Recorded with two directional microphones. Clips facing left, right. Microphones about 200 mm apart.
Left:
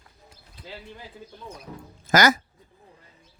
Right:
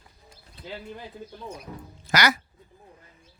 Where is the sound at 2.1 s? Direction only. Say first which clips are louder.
Left 5 dB; 45° left (ahead or behind).